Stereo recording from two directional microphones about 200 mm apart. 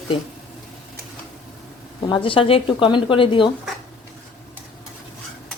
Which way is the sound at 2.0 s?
25° left (ahead or behind).